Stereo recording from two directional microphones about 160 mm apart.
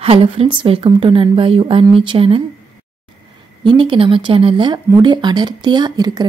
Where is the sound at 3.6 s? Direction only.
30° right (ahead or behind).